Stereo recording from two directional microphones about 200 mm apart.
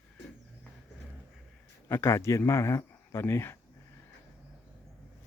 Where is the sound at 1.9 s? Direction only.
10° left (ahead or behind).